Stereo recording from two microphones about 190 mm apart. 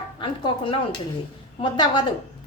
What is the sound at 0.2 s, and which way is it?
A woman's voice, 25° left (ahead or behind).